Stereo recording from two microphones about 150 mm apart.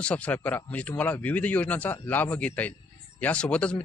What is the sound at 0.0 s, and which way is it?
Speech, 10° left (ahead or behind).